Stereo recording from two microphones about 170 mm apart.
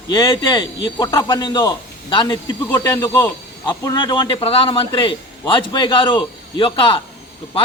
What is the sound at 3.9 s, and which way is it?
A man's voice, 25° left (ahead or behind).